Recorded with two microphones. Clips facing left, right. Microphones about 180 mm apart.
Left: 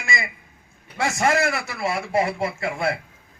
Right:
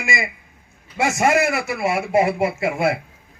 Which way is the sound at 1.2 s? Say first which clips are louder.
Right 3 dB; 20° right (ahead or behind).